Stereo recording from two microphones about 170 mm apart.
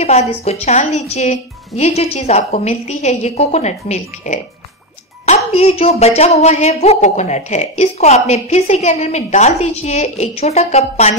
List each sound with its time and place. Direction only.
0.0 s speech: 40° left (ahead or behind)
5.5 s speech: 35° left (ahead or behind)